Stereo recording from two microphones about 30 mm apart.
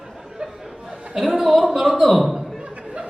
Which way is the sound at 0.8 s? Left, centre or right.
Right.